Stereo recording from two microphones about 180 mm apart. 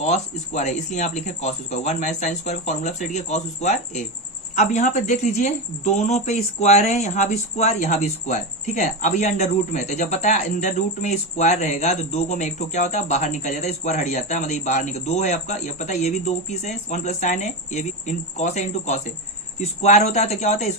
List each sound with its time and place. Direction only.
0.0 s a woman's voice: 40° left (ahead or behind)